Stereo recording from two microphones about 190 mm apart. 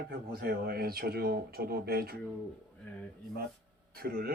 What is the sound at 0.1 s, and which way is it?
Speech, 55° right (ahead or behind).